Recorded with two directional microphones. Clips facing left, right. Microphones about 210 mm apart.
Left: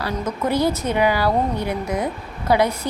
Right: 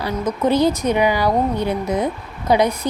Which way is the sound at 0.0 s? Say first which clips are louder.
Right 4 dB; 20° right (ahead or behind).